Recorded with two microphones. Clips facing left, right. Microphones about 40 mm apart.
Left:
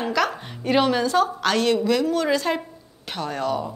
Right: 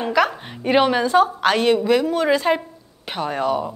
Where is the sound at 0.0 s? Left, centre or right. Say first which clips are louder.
Right 4 dB; centre.